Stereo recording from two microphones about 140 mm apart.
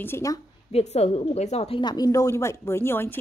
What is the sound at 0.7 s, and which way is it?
A woman's voice, 50° left (ahead or behind).